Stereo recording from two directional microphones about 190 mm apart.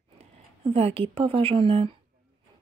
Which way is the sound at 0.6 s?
30° right (ahead or behind).